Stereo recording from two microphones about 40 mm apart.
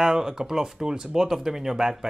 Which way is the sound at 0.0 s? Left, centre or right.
Centre.